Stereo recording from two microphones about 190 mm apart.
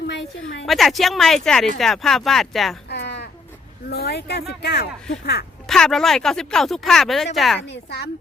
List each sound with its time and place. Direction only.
0.6 s speech: centre (ahead or behind)
2.9 s a sound: 60° left (ahead or behind)
3.8 s speech: 55° left (ahead or behind)
5.6 s speech: centre (ahead or behind)